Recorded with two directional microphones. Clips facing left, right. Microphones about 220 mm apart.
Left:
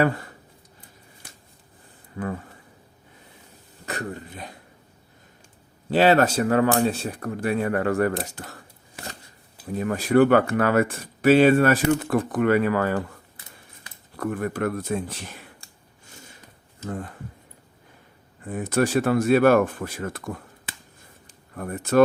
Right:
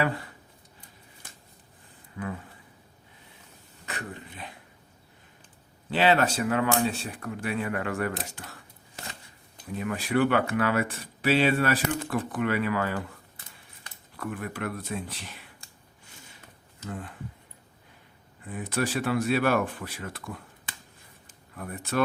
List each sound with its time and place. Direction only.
2.1 s speech: 45° left (ahead or behind)
3.8 s a man's voice: 40° left (ahead or behind)
5.9 s speech: 40° left (ahead or behind)
9.7 s speech: 40° left (ahead or behind)
14.2 s speech: 45° left (ahead or behind)
18.4 s speech: 45° left (ahead or behind)
21.5 s speech: 45° left (ahead or behind)